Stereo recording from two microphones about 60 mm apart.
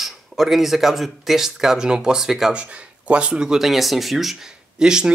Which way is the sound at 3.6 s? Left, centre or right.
Centre.